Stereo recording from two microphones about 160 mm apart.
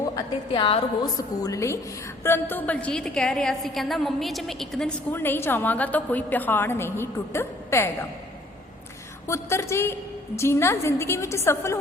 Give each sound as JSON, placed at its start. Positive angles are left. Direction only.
{"t": 0.5, "sound": "a woman's voice", "side_deg": 35}
{"t": 1.0, "sound": "a woman's voice", "side_deg": 25}
{"t": 5.1, "sound": "a woman's voice", "side_deg": 15}
{"t": 9.2, "sound": "a woman's voice", "side_deg": 15}